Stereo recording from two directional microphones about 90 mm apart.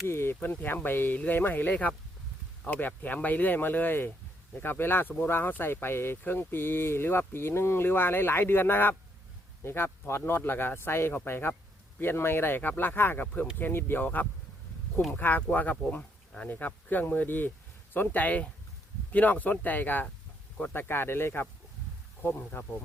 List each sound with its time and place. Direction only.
0.1 s speech: 30° left (ahead or behind)
0.3 s speech: 20° left (ahead or behind)